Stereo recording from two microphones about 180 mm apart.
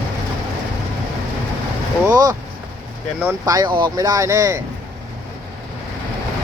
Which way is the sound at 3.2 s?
15° right (ahead or behind).